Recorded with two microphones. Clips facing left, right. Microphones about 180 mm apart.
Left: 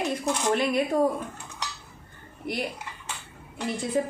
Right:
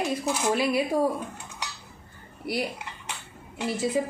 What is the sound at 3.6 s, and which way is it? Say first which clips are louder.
Speech: right 1 dB; 10° right (ahead or behind).